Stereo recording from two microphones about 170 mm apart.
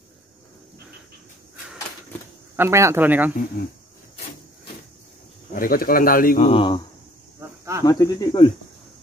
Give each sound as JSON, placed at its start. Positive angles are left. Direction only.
{"t": 2.5, "sound": "speech", "side_deg": -15}
{"t": 5.5, "sound": "speech", "side_deg": 55}
{"t": 6.4, "sound": "speech", "side_deg": 30}
{"t": 7.3, "sound": "cricket", "side_deg": -15}
{"t": 7.8, "sound": "speech", "side_deg": 20}